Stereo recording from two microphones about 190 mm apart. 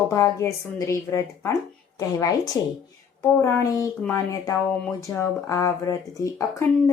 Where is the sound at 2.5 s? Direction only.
20° left (ahead or behind).